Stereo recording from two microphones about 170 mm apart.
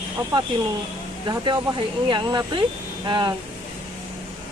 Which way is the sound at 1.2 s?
25° right (ahead or behind).